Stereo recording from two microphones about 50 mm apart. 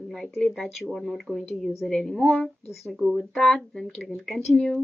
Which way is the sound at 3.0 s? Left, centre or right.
Centre.